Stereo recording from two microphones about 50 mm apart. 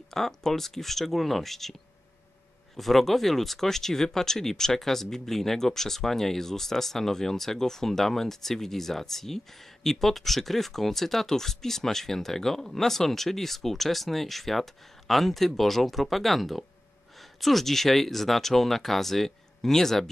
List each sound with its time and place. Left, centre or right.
0.1 s speech: centre